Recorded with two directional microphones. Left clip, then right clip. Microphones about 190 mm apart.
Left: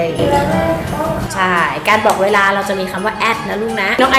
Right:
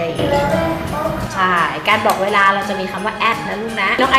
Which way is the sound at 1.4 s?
10° left (ahead or behind).